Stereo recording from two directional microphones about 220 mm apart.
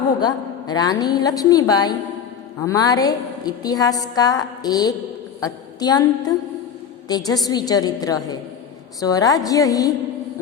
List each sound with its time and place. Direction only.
0.2 s a woman's voice: 20° left (ahead or behind)